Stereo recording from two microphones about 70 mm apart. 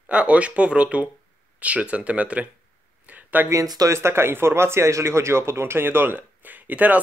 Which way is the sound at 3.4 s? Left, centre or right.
Right.